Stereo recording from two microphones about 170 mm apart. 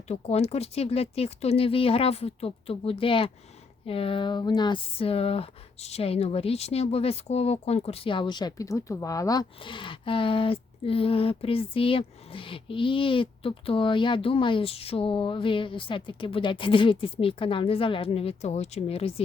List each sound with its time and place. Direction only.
0.1 s speech: 40° left (ahead or behind)